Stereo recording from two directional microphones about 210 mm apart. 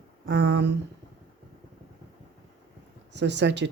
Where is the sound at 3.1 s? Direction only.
55° right (ahead or behind).